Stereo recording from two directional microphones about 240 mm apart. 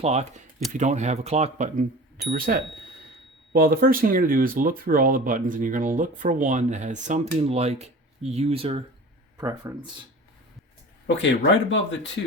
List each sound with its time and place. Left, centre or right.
0.0 s speech: right
11.0 s speech: left